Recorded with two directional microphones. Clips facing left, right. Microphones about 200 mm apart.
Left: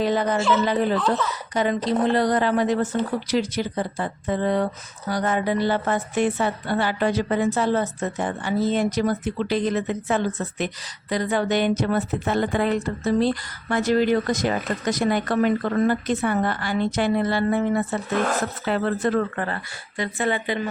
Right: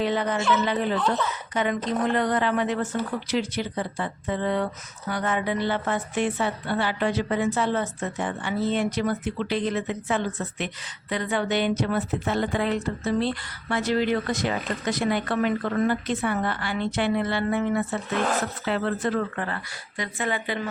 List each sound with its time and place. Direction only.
0.0 s speech: 40° left (ahead or behind)
20.0 s speech: 30° left (ahead or behind)